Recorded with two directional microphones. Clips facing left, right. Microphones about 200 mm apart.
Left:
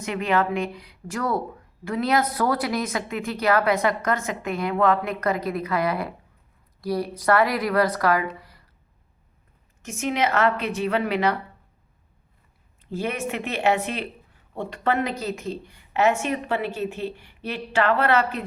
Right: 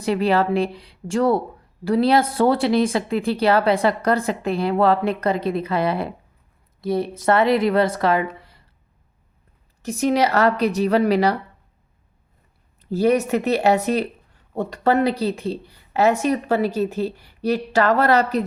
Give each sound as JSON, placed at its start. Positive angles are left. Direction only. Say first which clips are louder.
{"t": 0.0, "sound": "a woman's voice", "louder": "right 5 dB", "side_deg": -35}
{"t": 9.8, "sound": "speech", "louder": "right 6 dB", "side_deg": -35}
{"t": 12.8, "sound": "speech", "louder": "right 10 dB", "side_deg": -40}